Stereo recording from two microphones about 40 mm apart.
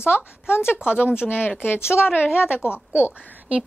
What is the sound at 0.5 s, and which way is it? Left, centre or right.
Speech, left.